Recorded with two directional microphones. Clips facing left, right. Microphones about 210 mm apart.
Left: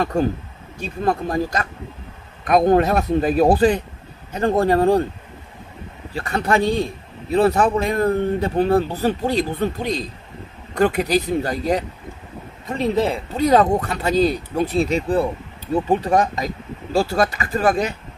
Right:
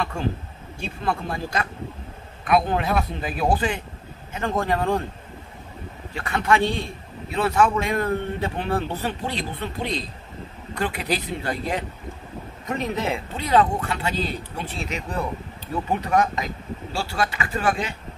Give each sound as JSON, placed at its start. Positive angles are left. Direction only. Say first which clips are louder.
{"t": 0.0, "sound": "a man's voice", "louder": "left 7 dB", "side_deg": 40}
{"t": 6.1, "sound": "a man's voice", "louder": "left 2 dB", "side_deg": 35}